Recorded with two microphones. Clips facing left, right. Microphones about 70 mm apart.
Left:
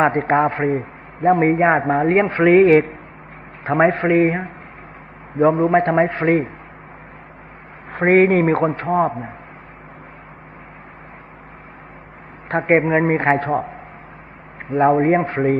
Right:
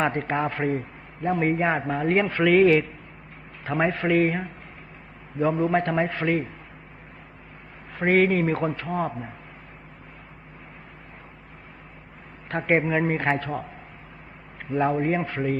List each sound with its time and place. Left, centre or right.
0.0 s a man's voice: left
7.9 s a man's voice: left
12.5 s a man's voice: left
14.7 s speech: left